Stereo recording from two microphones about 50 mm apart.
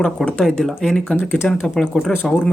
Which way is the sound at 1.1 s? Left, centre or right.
Left.